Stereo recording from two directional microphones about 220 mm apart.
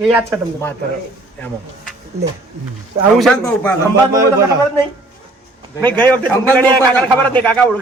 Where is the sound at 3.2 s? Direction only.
Centre (ahead or behind).